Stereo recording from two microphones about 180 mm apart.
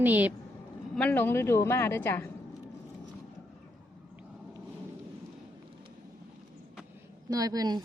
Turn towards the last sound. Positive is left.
turn(degrees=-20)  # may be behind; listen again after turning